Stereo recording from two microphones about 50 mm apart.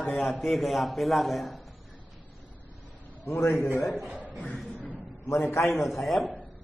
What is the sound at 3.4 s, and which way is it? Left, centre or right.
Speech, left.